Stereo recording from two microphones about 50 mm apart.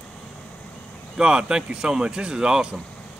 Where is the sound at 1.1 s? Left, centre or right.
Centre.